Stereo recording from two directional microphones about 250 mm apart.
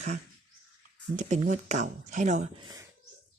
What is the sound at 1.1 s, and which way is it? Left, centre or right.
Speech, right.